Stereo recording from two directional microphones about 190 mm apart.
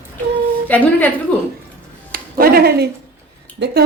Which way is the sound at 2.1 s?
50° right (ahead or behind).